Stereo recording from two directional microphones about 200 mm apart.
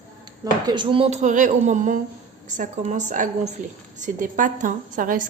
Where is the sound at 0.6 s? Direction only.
25° right (ahead or behind).